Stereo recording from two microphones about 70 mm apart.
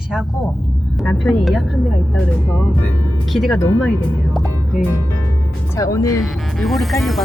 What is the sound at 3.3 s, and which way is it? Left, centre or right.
Speech, centre.